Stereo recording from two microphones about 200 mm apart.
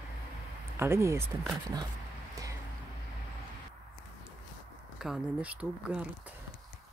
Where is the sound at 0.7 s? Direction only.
15° right (ahead or behind).